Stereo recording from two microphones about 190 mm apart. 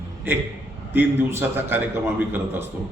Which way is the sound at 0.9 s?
10° right (ahead or behind).